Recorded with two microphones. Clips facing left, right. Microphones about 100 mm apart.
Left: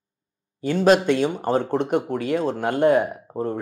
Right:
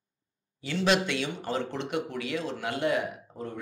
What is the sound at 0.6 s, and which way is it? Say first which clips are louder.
Speech: left 9 dB; 50° left (ahead or behind).